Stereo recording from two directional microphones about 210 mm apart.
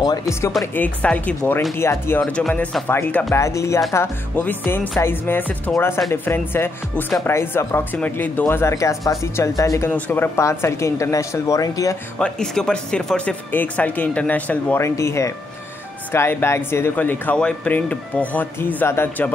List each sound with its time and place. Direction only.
0.0 s speech: 15° left (ahead or behind)
0.5 s speech: 5° left (ahead or behind)
12.2 s speech: 5° left (ahead or behind)